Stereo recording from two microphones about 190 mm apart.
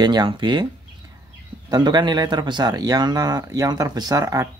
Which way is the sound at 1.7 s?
20° right (ahead or behind).